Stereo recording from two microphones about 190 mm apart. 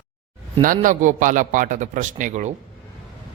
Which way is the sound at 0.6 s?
45° right (ahead or behind).